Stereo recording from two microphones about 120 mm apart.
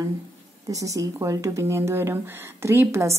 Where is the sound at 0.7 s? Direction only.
25° right (ahead or behind).